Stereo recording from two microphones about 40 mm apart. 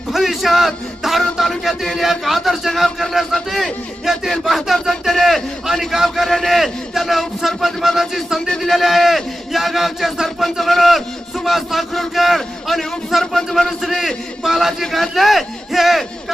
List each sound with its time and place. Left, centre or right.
0.1 s music: centre
1.4 s a man's voice: centre
5.9 s music: centre
6.2 s a man's voice: centre
7.4 s music: centre
8.4 s a man's voice: centre
8.8 s a man's voice: centre